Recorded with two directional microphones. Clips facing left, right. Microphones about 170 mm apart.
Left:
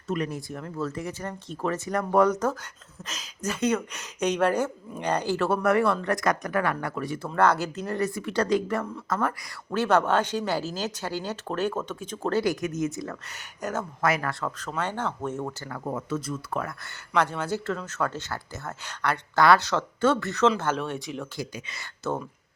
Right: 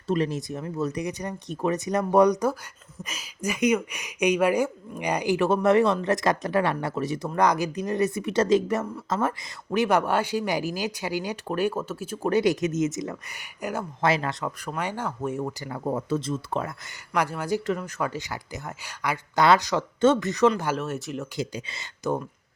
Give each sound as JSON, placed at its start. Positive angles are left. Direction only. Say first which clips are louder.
{"t": 0.1, "sound": "speech", "louder": "right 4 dB", "side_deg": -25}
{"t": 9.6, "sound": "speech", "louder": "even", "side_deg": -15}
{"t": 14.0, "sound": "speech", "louder": "right 2 dB", "side_deg": -25}
{"t": 15.7, "sound": "speech", "louder": "right 4 dB", "side_deg": -30}
{"t": 21.3, "sound": "speech", "louder": "right 4 dB", "side_deg": -25}